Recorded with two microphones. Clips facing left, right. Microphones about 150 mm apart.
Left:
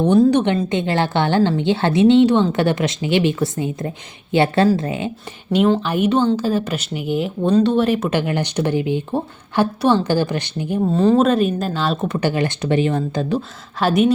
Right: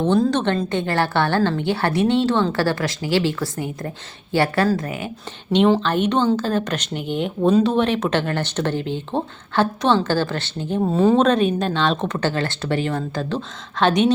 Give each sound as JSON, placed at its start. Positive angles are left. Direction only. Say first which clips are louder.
{"t": 0.2, "sound": "a woman's voice", "louder": "left 5 dB", "side_deg": 10}
{"t": 5.5, "sound": "speech", "louder": "even", "side_deg": 5}
{"t": 10.9, "sound": "speech", "louder": "left 1 dB", "side_deg": 0}